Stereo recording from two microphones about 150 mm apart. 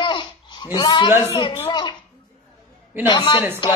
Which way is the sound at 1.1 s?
15° right (ahead or behind).